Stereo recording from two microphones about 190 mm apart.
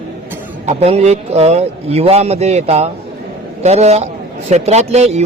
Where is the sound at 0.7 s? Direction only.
35° right (ahead or behind).